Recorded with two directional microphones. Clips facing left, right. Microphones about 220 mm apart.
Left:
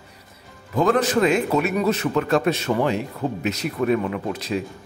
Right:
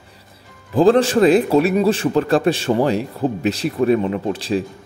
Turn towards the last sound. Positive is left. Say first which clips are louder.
# right 5 dB
turn(degrees=-30)  # may be behind; listen again after turning